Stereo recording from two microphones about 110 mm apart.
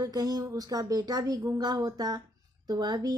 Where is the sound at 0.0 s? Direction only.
35° right (ahead or behind).